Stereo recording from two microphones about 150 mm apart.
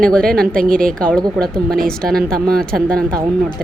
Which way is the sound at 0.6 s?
65° right (ahead or behind).